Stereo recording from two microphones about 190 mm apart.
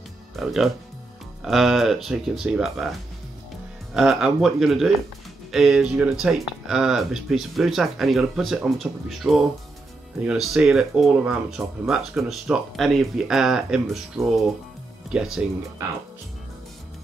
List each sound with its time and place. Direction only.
0.4 s speech: centre (ahead or behind)
3.9 s speech: centre (ahead or behind)